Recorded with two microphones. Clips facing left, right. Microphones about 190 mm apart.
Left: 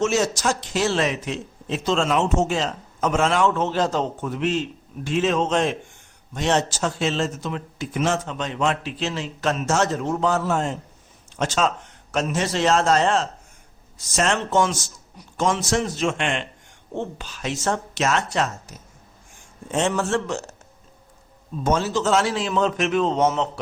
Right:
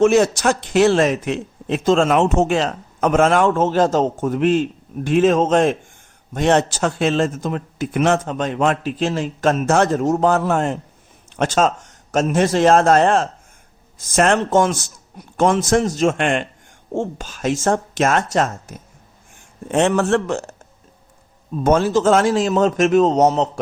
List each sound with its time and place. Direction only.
0.0 s speech: 55° right (ahead or behind)
11.3 s speech: 50° right (ahead or behind)
19.6 s a man's voice: 65° right (ahead or behind); by 23.5 s 40° right (ahead or behind)